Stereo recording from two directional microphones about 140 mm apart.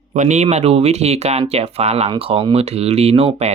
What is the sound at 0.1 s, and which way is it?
Speech, 55° right (ahead or behind).